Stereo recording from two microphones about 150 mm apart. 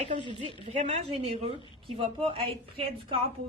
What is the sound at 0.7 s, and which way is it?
A woman's voice, 45° right (ahead or behind).